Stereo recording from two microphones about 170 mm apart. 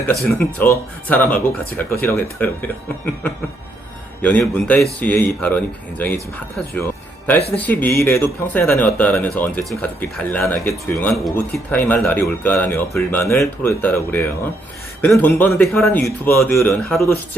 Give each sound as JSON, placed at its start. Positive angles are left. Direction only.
{"t": 0.1, "sound": "speech", "side_deg": 0}
{"t": 4.2, "sound": "speech", "side_deg": 10}
{"t": 11.8, "sound": "speech", "side_deg": 10}